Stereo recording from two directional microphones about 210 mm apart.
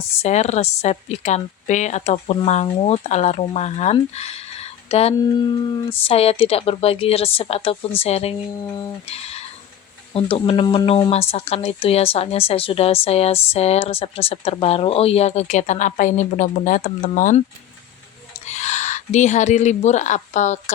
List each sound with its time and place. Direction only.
0.2 s a woman's voice: 30° left (ahead or behind)
18.4 s speech: 35° left (ahead or behind)